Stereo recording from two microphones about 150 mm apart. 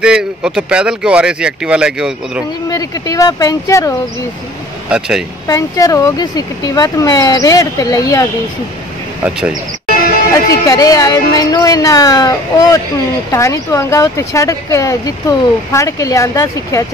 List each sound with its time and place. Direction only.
0.0 s speech: 5° right (ahead or behind)
2.7 s speech: 25° left (ahead or behind)
4.8 s speech: 5° right (ahead or behind)
5.5 s speech: 25° left (ahead or behind)
9.2 s speech: 5° right (ahead or behind)
10.3 s speech: 20° left (ahead or behind)